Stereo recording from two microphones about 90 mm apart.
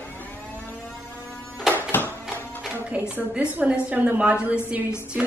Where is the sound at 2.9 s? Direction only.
15° right (ahead or behind).